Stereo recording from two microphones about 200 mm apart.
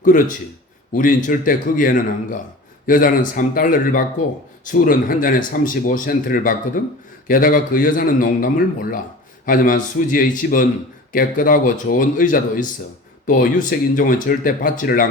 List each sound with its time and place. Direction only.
0.9 s speech: 45° left (ahead or behind)